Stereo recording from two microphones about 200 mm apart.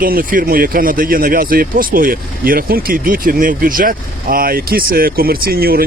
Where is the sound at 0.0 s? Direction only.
45° right (ahead or behind).